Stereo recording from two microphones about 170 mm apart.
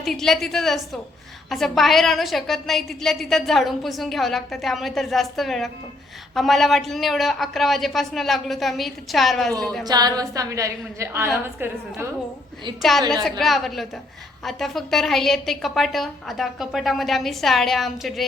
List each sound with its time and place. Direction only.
0.0 s a woman's voice: centre (ahead or behind)
9.8 s a woman's voice: 25° right (ahead or behind)
13.4 s a woman's voice: centre (ahead or behind)